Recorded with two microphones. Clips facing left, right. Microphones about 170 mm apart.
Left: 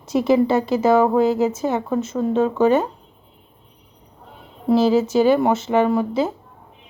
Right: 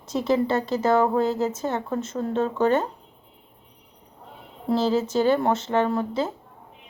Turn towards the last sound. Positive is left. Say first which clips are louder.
# left 5 dB
turn(degrees=10)  # may be behind; listen again after turning